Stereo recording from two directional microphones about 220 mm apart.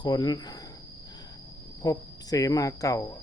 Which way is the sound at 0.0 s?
20° left (ahead or behind).